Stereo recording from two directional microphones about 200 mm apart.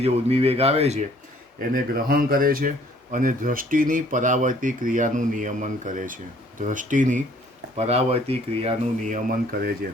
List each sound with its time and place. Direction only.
0.0 s speech: 30° right (ahead or behind)
1.5 s speech: 45° right (ahead or behind)